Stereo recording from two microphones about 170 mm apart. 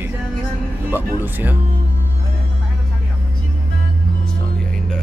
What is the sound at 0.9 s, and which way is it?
Speech, 10° right (ahead or behind).